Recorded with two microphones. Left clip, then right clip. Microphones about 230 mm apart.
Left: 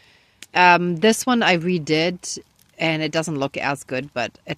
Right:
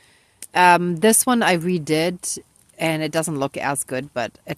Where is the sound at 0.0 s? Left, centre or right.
Centre.